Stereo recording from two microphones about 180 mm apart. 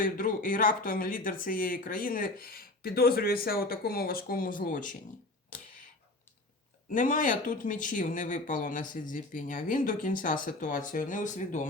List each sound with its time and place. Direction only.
0.0 s speech: 50° left (ahead or behind)
6.9 s speech: 45° left (ahead or behind)